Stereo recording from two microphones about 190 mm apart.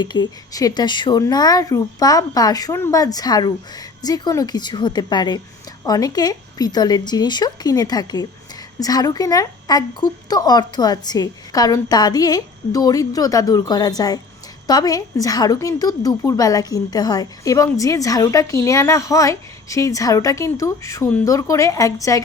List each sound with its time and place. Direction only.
0.0 s a woman's voice: 25° left (ahead or behind)